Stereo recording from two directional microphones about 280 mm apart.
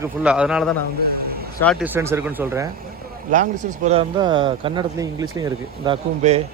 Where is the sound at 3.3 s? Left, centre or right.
Right.